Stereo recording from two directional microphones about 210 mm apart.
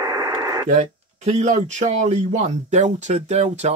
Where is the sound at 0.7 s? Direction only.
30° right (ahead or behind).